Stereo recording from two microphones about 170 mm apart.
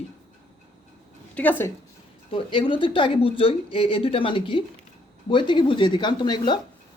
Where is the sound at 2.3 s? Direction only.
30° left (ahead or behind).